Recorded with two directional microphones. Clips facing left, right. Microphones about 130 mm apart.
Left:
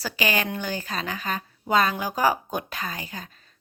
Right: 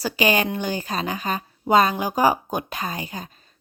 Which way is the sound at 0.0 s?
20° right (ahead or behind).